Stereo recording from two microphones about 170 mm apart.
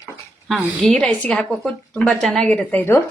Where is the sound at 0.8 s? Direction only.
5° left (ahead or behind).